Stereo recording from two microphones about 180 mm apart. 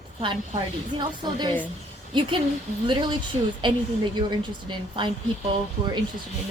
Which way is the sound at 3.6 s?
25° right (ahead or behind).